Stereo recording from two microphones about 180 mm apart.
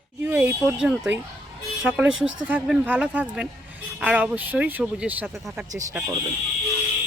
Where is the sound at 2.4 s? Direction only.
10° right (ahead or behind).